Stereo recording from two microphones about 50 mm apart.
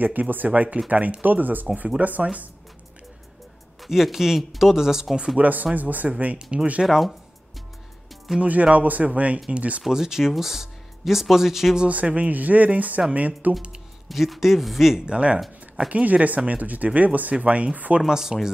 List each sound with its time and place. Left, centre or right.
0.0 s speech: right
3.8 s speech: centre
5.4 s speech: right
6.0 s speech: right
6.8 s speech: centre
8.4 s speech: right
9.8 s speech: centre
11.8 s speech: right
14.0 s speech: centre
15.0 s speech: right
15.4 s speech: centre
15.9 s speech: right
18.0 s speech: centre